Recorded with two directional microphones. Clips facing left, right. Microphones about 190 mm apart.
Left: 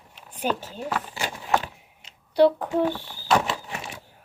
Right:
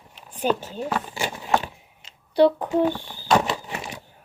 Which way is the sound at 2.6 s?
15° right (ahead or behind).